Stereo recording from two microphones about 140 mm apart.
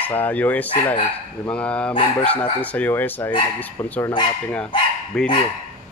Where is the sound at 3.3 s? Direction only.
30° left (ahead or behind).